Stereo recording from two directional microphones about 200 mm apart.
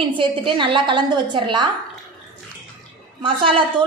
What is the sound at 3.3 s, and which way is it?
Speech, 25° right (ahead or behind).